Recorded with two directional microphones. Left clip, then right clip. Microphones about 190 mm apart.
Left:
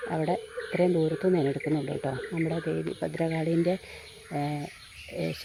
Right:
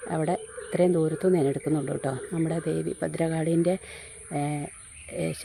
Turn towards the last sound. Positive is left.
turn(degrees=-10)  # may be behind; listen again after turning